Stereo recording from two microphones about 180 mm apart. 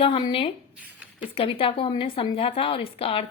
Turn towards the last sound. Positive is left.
turn(degrees=30)  # may be behind; listen again after turning